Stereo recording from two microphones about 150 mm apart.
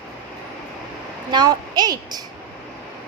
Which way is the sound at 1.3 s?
30° right (ahead or behind).